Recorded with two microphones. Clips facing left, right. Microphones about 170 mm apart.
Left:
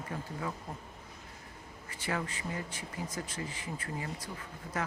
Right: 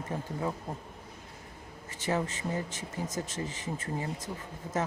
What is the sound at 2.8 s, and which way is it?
Speech, 45° right (ahead or behind).